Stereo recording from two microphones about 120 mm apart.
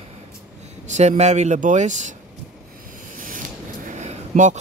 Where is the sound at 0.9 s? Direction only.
80° right.